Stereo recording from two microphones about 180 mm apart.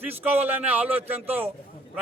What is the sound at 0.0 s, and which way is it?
A man's voice, 10° right (ahead or behind).